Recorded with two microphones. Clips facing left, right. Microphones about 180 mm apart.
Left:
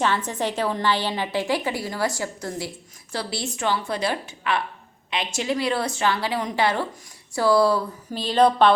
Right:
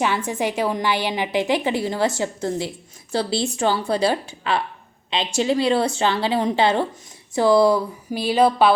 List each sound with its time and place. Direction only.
0.0 s a woman's voice: 10° right (ahead or behind)